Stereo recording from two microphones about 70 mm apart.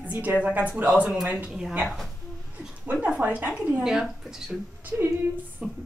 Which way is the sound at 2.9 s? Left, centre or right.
Centre.